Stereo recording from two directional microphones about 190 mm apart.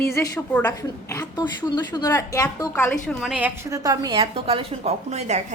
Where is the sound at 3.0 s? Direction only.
Centre (ahead or behind).